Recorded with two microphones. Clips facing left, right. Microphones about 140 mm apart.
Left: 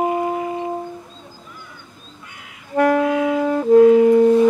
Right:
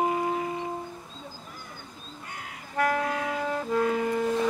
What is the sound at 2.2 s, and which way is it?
Music, 45° right (ahead or behind).